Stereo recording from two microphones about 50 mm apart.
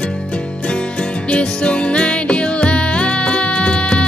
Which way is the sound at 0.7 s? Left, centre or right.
Left.